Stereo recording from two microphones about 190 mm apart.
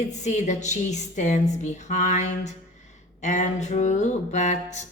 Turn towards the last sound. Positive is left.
turn(degrees=40)  # may be behind; listen again after turning